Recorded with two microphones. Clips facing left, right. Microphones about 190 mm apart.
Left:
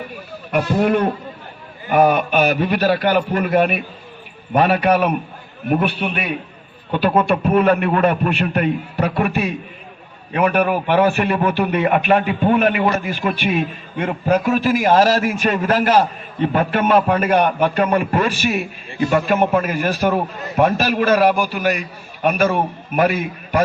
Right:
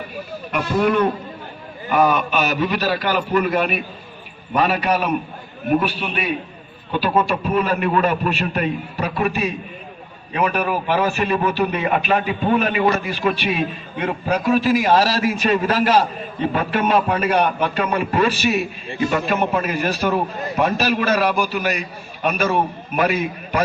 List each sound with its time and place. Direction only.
0.5 s a man's voice: 45° left (ahead or behind)